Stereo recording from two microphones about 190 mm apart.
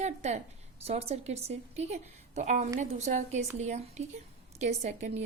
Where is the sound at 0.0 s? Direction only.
35° right (ahead or behind).